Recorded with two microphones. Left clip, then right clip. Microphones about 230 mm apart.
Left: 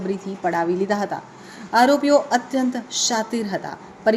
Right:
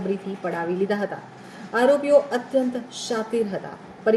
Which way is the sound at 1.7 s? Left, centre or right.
Left.